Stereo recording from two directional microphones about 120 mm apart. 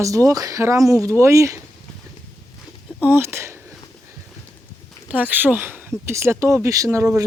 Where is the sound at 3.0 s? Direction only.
15° right (ahead or behind).